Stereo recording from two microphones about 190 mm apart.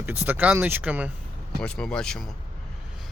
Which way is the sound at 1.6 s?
5° left (ahead or behind).